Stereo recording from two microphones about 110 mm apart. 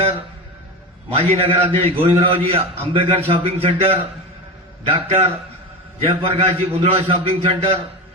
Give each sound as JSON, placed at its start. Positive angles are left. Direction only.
{"t": 1.1, "sound": "a man's voice", "side_deg": -60}
{"t": 4.9, "sound": "a man's voice", "side_deg": -75}
{"t": 6.1, "sound": "a man's voice", "side_deg": -60}